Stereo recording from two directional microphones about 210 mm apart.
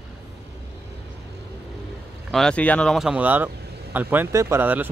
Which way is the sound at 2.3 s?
5° left (ahead or behind).